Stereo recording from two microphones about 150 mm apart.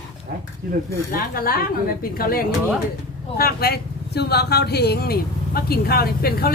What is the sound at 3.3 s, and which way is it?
Speech, 90° left.